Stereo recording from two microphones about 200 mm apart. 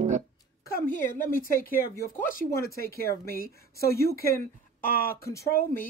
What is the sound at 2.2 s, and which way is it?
A man's voice, 45° left (ahead or behind).